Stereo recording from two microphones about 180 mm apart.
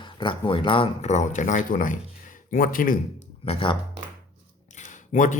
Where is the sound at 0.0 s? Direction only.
25° left (ahead or behind); by 3.0 s 50° left (ahead or behind).